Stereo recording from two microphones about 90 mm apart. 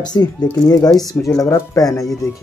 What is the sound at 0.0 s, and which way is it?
Speech, 50° left (ahead or behind).